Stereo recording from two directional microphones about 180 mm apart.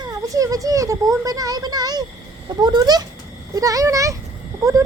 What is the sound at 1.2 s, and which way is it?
A child's voice, 20° right (ahead or behind).